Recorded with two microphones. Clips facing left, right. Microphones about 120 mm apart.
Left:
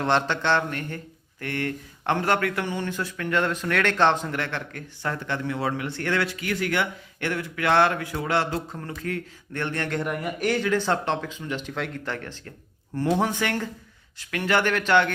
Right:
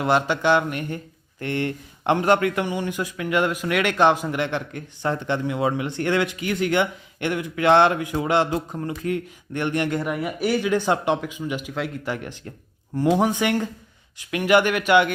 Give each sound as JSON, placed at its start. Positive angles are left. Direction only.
{"t": 0.0, "sound": "speech", "side_deg": -10}
{"t": 10.0, "sound": "speech", "side_deg": -5}